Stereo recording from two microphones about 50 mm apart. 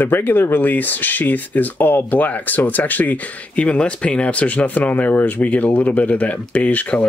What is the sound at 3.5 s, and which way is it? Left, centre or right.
Speech, left.